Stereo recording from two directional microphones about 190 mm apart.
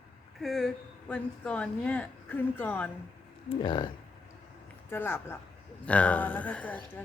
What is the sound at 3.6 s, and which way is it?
Speech, 25° left (ahead or behind).